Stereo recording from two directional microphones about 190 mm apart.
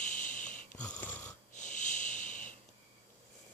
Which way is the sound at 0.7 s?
10° left (ahead or behind).